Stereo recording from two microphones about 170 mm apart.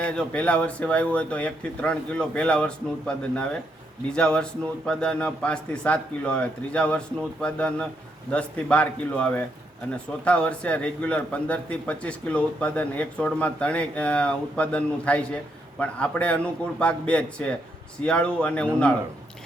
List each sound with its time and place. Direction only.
0.0 s a man's voice: 5° left (ahead or behind)